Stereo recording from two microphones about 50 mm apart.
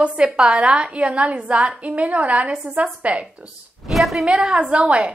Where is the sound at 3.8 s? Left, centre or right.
Centre.